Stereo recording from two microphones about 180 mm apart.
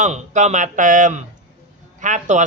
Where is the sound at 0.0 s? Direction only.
40° right (ahead or behind).